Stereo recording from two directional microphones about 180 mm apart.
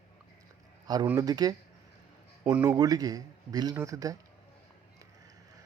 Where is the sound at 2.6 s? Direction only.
20° right (ahead or behind).